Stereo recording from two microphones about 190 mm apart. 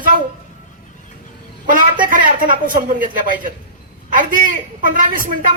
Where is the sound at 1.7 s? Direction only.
45° right (ahead or behind).